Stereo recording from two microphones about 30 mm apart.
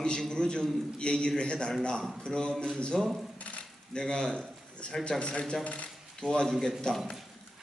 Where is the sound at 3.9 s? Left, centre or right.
Left.